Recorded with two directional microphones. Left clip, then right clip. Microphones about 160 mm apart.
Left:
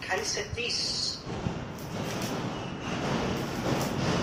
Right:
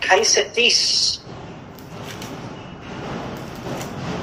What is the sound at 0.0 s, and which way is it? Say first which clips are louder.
A woman's voice: right 15 dB; 50° right (ahead or behind).